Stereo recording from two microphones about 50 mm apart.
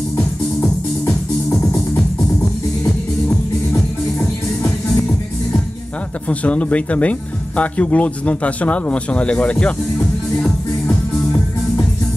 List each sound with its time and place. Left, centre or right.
1.0 s music: left
6.2 s speech: left
10.3 s music: left